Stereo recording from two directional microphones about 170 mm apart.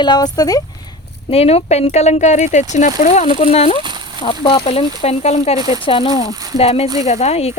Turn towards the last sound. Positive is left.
turn(degrees=40)  # may be behind; listen again after turning